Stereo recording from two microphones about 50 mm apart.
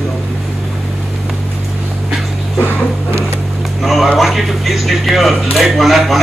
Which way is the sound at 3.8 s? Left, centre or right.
Centre.